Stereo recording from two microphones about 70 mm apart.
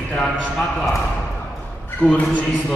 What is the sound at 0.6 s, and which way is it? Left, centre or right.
Speech, centre.